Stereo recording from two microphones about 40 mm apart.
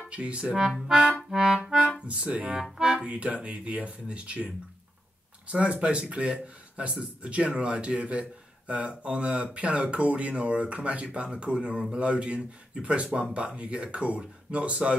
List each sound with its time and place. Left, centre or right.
0.1 s speech: right
1.3 s music: centre
2.1 s speech: right
5.5 s speech: right